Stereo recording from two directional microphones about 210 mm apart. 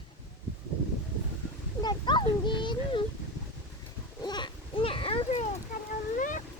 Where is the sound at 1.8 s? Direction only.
20° left (ahead or behind).